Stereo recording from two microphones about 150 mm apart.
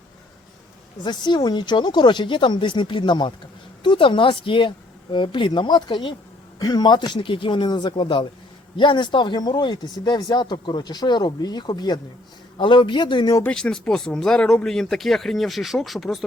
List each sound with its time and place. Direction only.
1.0 s speech: 30° left (ahead or behind)
13.4 s speech: 5° left (ahead or behind)